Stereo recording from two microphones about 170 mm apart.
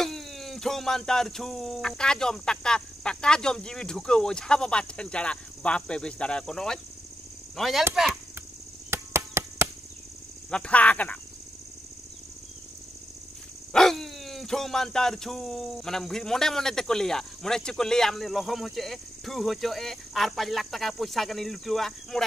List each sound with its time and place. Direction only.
0.0 s speech: centre (ahead or behind)
8.9 s cricket: 15° right (ahead or behind)
10.5 s speech: 5° left (ahead or behind)
13.7 s speech: centre (ahead or behind)